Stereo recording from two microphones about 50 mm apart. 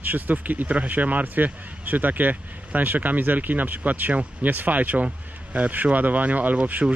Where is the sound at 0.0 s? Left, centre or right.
Right.